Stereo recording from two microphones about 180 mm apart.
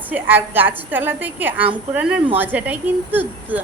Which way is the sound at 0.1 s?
10° right (ahead or behind).